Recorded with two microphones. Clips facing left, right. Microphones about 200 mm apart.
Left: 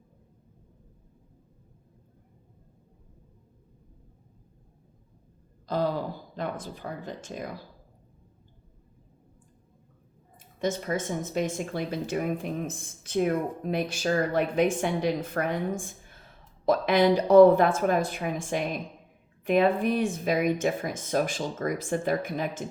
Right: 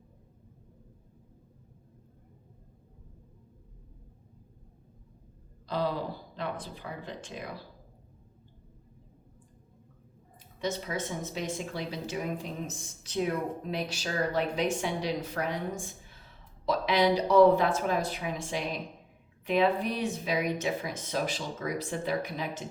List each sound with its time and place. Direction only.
5.6 s gasp: 45° left (ahead or behind)
6.3 s speech: 45° left (ahead or behind)
10.6 s speech: 50° left (ahead or behind)